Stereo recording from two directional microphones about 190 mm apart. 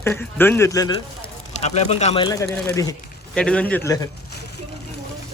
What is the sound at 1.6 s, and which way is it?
Speech, 35° left (ahead or behind).